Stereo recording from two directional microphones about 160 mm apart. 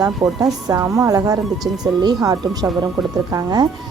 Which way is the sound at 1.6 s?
Centre (ahead or behind).